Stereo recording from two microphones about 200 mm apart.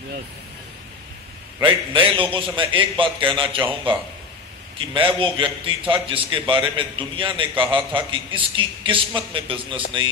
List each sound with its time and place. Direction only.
1.6 s a man's voice: 25° right (ahead or behind)